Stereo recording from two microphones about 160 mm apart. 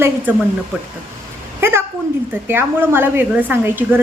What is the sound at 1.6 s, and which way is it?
A woman's voice, 15° right (ahead or behind).